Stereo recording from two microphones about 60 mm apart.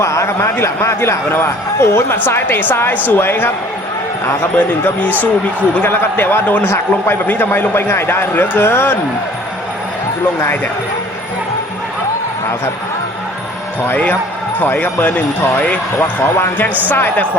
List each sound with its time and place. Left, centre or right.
0.0 s a man's voice: left
0.3 s speech: left
2.3 s a man's voice: left
5.2 s speech: left
5.9 s a man's voice: left
10.4 s a man's voice: left
13.8 s a man's voice: left